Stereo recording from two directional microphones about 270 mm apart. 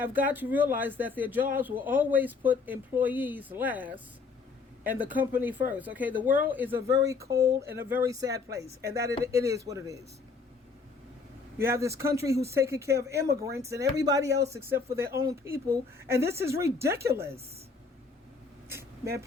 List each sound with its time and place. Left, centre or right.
0.0 s speech: centre
11.5 s speech: centre
18.7 s vehicle: centre